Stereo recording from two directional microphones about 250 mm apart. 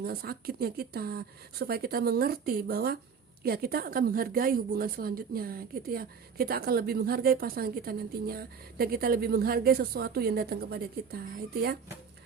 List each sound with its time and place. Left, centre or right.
0.0 s a woman's voice: right